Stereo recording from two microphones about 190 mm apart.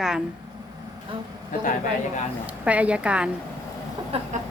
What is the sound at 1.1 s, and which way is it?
Speech, 30° right (ahead or behind).